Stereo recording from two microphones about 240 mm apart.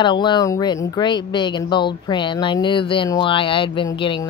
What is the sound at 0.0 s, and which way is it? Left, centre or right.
Speech, centre.